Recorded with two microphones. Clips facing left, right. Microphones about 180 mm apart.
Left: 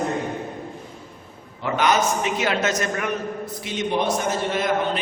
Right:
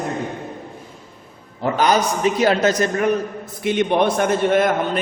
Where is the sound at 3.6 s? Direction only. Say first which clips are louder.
Right 8 dB; 55° right (ahead or behind).